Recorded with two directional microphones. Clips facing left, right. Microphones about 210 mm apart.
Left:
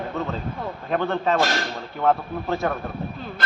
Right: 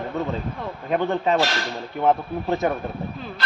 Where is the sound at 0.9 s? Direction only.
15° right (ahead or behind).